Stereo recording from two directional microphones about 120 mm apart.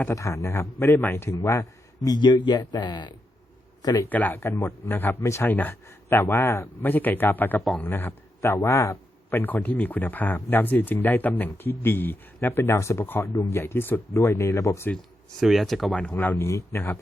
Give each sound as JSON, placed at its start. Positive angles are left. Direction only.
{"t": 0.0, "sound": "a man's voice", "side_deg": 25}
{"t": 2.0, "sound": "a man's voice", "side_deg": 35}
{"t": 4.1, "sound": "a man's voice", "side_deg": 15}
{"t": 15.4, "sound": "a man's voice", "side_deg": 0}